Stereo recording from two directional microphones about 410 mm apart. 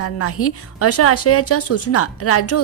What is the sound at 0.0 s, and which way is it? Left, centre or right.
A woman's voice, left.